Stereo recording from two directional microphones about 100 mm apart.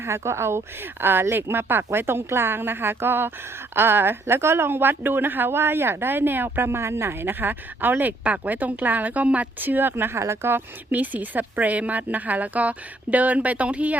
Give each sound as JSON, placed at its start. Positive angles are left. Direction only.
{"t": 0.0, "sound": "a woman's voice", "side_deg": -25}